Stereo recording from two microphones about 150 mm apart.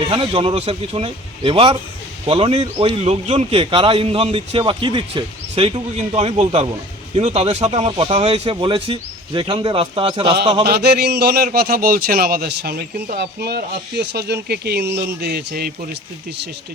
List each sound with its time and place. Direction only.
0.1 s a man's voice: 35° right (ahead or behind)
10.7 s a man's voice: 90° right